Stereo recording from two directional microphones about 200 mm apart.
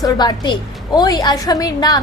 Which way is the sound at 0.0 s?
20° left (ahead or behind).